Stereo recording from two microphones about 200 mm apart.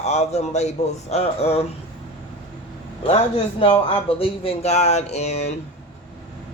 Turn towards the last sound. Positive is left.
turn(degrees=35)  # may be behind; listen again after turning